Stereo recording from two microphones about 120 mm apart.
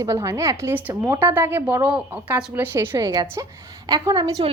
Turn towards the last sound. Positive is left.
turn(degrees=-30)  # may be behind; listen again after turning